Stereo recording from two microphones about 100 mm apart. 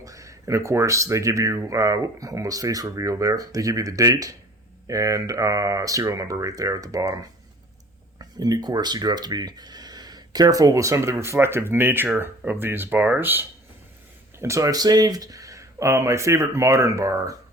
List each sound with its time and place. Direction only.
0.0 s speech: 35° right (ahead or behind)